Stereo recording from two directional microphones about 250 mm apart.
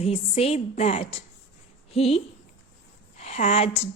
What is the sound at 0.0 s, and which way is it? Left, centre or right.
A woman's voice, left.